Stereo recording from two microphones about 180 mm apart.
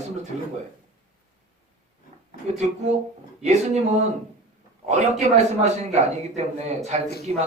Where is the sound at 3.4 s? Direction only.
40° right (ahead or behind).